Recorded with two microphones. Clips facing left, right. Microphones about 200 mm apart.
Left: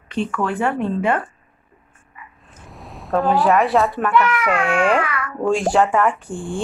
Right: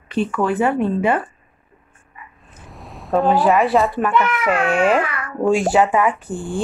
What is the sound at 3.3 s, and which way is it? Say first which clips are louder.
Speech: left 1 dB; centre (ahead or behind).